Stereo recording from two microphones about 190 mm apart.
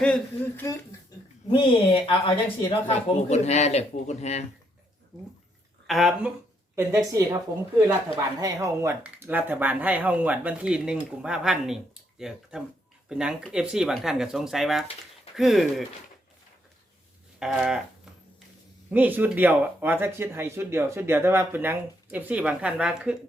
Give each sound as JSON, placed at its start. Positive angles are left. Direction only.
{"t": 0.0, "sound": "speech", "side_deg": 5}
{"t": 1.5, "sound": "speech", "side_deg": 25}
{"t": 5.9, "sound": "speech", "side_deg": 0}
{"t": 6.7, "sound": "speech", "side_deg": -15}
{"t": 17.4, "sound": "a sound", "side_deg": -5}
{"t": 18.9, "sound": "speech", "side_deg": -10}